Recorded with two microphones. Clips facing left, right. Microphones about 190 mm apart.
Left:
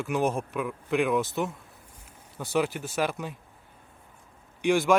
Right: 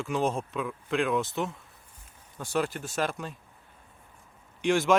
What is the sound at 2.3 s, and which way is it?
Speech, 10° left (ahead or behind).